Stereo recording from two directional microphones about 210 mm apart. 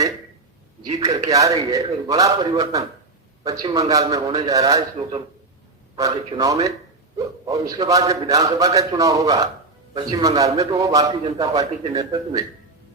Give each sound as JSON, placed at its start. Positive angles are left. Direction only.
{"t": 0.8, "sound": "a man's voice", "side_deg": -20}